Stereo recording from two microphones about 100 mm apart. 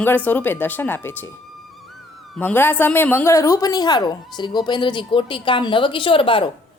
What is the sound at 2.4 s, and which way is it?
A woman's voice, 20° left (ahead or behind).